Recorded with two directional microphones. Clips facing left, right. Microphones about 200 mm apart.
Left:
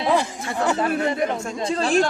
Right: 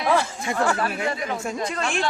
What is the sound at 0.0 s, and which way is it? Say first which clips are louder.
Speech: left 1 dB; 20° left (ahead or behind).